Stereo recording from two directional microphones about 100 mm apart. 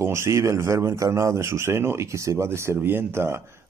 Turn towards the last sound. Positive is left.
turn(degrees=-25)  # may be behind; listen again after turning